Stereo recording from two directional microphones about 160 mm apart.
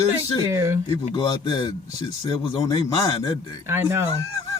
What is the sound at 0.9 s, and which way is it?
A man's voice, 25° left (ahead or behind).